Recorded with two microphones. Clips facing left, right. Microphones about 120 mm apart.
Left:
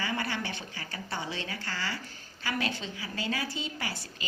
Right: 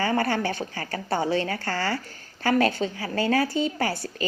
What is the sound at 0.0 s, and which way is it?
Speech, 50° right (ahead or behind).